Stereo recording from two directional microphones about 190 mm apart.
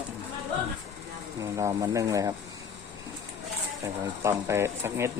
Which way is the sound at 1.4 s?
15° right (ahead or behind).